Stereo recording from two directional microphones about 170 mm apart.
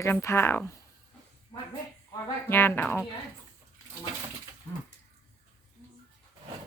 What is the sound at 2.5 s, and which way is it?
Speech, 15° left (ahead or behind).